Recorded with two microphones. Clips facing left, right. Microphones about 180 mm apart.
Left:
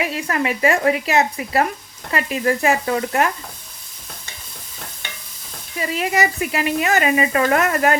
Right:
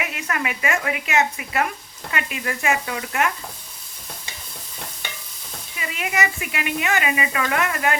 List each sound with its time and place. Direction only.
0.0 s speech: 30° left (ahead or behind)
5.7 s speech: 35° left (ahead or behind)